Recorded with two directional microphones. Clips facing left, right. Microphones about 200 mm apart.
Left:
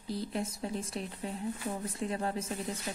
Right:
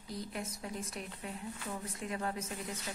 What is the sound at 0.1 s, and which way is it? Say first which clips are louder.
Speech: left 6 dB; 30° left (ahead or behind).